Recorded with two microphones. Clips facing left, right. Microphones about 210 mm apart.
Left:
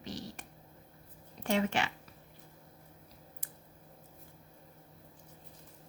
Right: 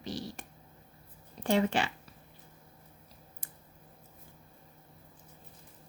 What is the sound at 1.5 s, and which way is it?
Speech, 35° right (ahead or behind).